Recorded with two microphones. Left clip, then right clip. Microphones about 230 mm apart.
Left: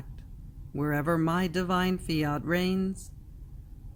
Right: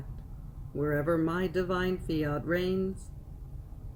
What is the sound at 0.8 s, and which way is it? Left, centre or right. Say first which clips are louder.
Speech: even; left.